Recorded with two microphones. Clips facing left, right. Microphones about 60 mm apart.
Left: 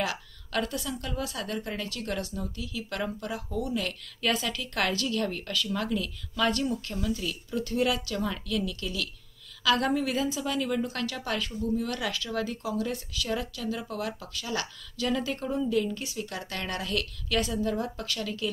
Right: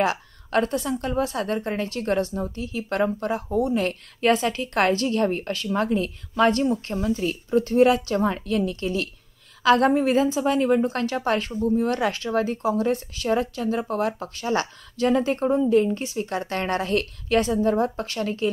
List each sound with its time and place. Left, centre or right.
0.0 s a woman's voice: right